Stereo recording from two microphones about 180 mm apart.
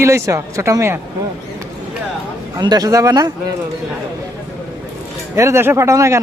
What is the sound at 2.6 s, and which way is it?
Speech, 20° right (ahead or behind).